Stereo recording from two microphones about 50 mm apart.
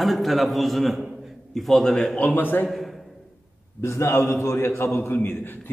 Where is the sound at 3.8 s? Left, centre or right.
Left.